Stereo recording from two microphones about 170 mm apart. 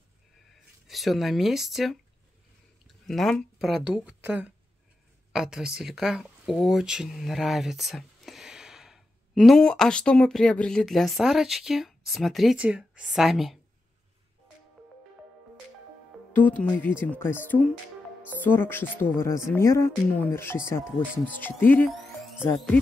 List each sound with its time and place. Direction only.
0.8 s a woman's voice: centre (ahead or behind)
3.1 s a woman's voice: centre (ahead or behind)
16.3 s speech: 10° left (ahead or behind)